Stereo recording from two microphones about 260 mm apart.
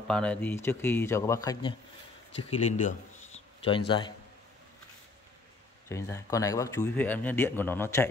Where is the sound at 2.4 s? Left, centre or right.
Left.